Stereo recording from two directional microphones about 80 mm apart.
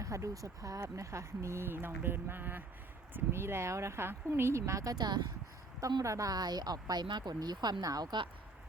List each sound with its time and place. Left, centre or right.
0.0 s speech: right
6.0 s speech: right